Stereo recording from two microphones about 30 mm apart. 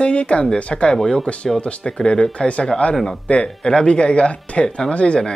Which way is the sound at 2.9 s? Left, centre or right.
Centre.